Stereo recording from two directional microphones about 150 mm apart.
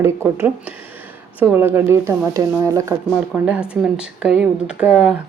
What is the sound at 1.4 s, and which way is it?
Speech, 15° right (ahead or behind).